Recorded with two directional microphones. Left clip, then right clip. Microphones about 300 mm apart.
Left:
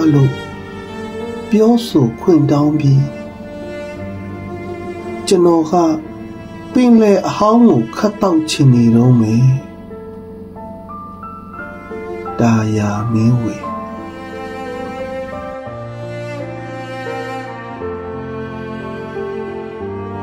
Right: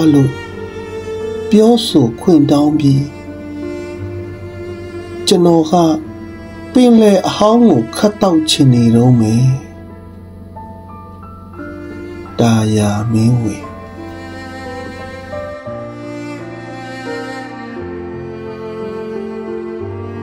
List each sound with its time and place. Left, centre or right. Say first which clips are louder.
1.5 s speech: right 3 dB; centre
5.2 s speech: right 1 dB; centre
12.4 s speech: right 3 dB; centre